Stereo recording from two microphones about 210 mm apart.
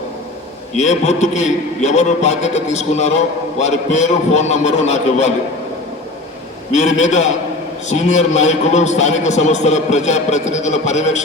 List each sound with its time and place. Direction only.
0.8 s a man's voice: 35° left (ahead or behind)
6.7 s a man's voice: 35° left (ahead or behind)